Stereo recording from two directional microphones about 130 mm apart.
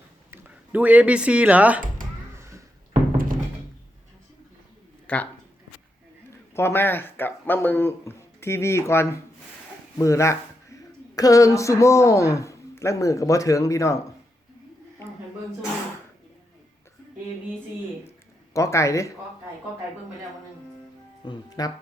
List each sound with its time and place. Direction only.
0.3 s speech: 15° right (ahead or behind)
2.3 s a sound: 20° right (ahead or behind)
2.9 s thunk: 90° right
5.0 s speech: 10° left (ahead or behind)
6.5 s speech: 20° left (ahead or behind)
18.5 s speech: 25° left (ahead or behind)
21.2 s speech: 30° left (ahead or behind)